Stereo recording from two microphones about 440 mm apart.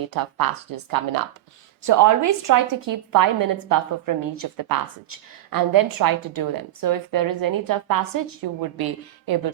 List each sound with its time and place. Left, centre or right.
0.1 s a woman's voice: right